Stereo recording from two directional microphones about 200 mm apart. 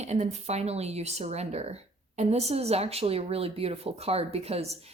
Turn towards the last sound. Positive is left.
turn(degrees=-30)  # may be behind; listen again after turning